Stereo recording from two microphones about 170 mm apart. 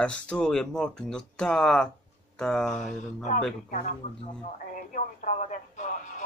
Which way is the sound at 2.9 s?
45° left (ahead or behind).